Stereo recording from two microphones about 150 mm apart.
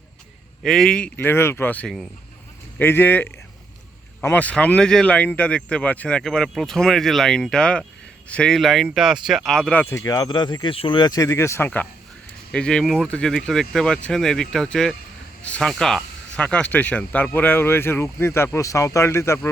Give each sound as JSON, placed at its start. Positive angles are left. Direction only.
{"t": 0.6, "sound": "speech", "side_deg": 0}
{"t": 9.8, "sound": "speech", "side_deg": 20}